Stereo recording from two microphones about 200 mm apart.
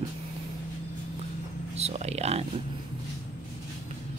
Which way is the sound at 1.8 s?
30° right (ahead or behind).